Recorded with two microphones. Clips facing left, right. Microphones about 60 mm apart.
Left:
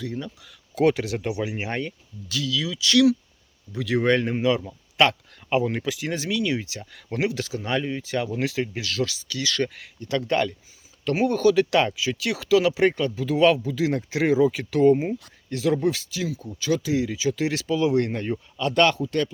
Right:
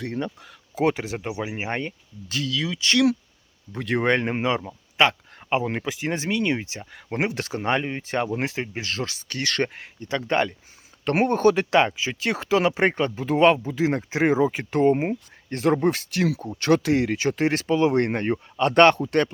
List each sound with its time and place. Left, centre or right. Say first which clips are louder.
0.0 s speech: right 3 dB; right
0.4 s speech: left 3 dB; right
2.3 s speech: even; right
11.0 s speech: right 1 dB; right
14.9 s speech: right 1 dB; right